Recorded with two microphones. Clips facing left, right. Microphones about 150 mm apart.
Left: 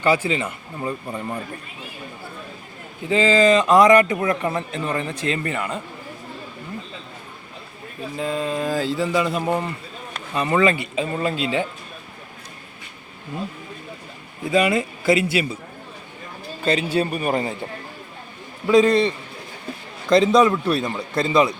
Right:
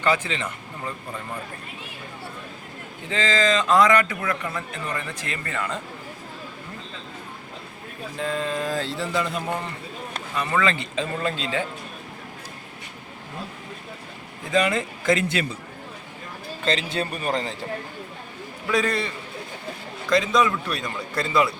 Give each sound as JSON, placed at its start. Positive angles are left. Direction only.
{"t": 0.0, "sound": "speech", "side_deg": 10}
{"t": 3.1, "sound": "speech", "side_deg": 15}
{"t": 4.1, "sound": "speech", "side_deg": 30}
{"t": 8.2, "sound": "mantra", "side_deg": 5}
{"t": 10.3, "sound": "speech", "side_deg": 20}
{"t": 14.5, "sound": "speech", "side_deg": 10}
{"t": 16.6, "sound": "speech", "side_deg": 10}
{"t": 18.7, "sound": "speech", "side_deg": 20}